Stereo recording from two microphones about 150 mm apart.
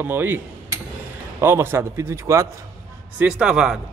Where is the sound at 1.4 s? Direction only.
15° right (ahead or behind).